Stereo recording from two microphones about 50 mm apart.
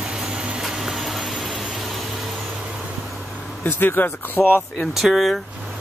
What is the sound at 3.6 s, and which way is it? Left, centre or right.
Speech, left.